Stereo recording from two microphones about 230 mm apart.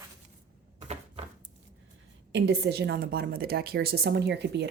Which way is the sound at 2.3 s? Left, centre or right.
Right.